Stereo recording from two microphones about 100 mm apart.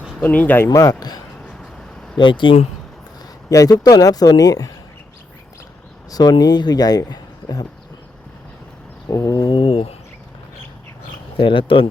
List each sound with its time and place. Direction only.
0.2 s speech: 15° left (ahead or behind)
0.7 s speech: 35° left (ahead or behind)
1.5 s vehicle: 5° left (ahead or behind)
2.1 s speech: 55° left (ahead or behind)
3.5 s speech: 35° left (ahead or behind)
6.1 s speech: 40° left (ahead or behind)
9.0 s speech: 35° left (ahead or behind)
9.5 s a sound: 65° left (ahead or behind)
11.3 s speech: 60° left (ahead or behind)